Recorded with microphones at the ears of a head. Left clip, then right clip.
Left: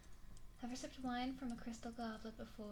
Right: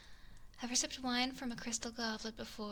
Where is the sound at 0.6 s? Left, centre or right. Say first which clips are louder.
Right 10 dB; right.